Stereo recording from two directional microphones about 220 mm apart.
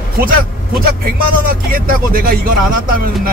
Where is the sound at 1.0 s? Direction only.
40° right (ahead or behind).